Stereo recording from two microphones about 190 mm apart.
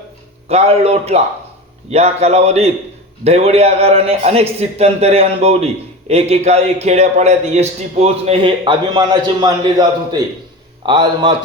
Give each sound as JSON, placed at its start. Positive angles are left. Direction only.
{"t": 0.4, "sound": "a man's voice", "side_deg": -30}